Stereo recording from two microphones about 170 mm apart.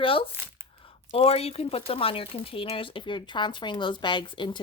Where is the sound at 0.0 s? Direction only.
30° left (ahead or behind).